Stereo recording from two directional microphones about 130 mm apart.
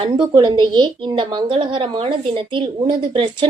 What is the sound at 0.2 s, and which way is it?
A woman's voice, 35° right (ahead or behind).